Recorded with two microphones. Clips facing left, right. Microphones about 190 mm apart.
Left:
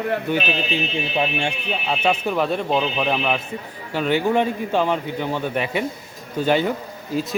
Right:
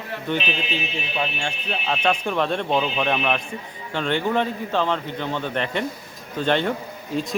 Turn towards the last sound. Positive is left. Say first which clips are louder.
# left 2 dB
turn(degrees=5)  # may be behind; listen again after turning